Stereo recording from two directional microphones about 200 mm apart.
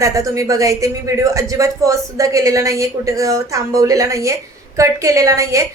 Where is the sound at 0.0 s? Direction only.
15° right (ahead or behind).